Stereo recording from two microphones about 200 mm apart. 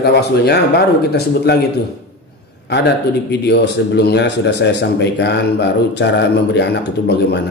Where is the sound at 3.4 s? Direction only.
55° left (ahead or behind).